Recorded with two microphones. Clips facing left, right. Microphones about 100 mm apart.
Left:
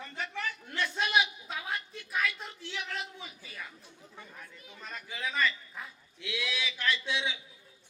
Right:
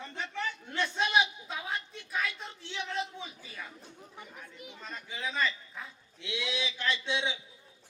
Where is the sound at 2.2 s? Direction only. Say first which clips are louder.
Left 3 dB; 25° right (ahead or behind).